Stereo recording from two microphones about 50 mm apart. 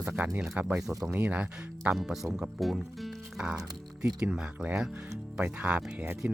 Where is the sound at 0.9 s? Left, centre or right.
Right.